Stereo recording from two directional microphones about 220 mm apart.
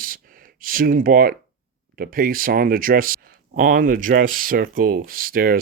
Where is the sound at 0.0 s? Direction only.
40° right (ahead or behind).